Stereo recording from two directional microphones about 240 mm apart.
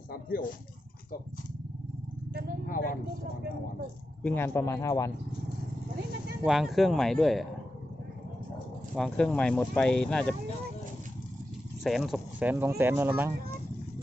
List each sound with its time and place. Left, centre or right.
0.1 s speech: left
2.6 s vehicle: left
4.2 s speech: centre
6.4 s speech: centre
9.0 s speech: centre
11.8 s speech: centre